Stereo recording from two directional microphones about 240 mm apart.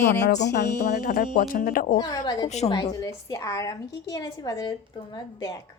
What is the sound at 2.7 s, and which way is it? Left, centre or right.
A woman's voice, centre.